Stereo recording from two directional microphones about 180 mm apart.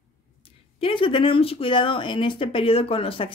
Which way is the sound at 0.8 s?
30° left (ahead or behind).